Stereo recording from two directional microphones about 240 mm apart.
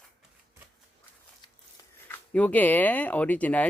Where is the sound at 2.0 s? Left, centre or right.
Centre.